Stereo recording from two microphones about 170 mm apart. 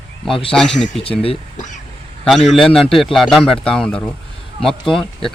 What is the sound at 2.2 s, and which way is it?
A man's voice, centre (ahead or behind).